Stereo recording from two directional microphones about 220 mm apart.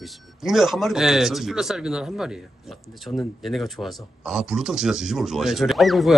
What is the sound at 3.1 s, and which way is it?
Speech, 15° left (ahead or behind).